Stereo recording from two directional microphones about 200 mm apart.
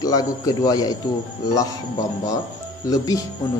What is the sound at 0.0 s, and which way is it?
Speech, 20° left (ahead or behind).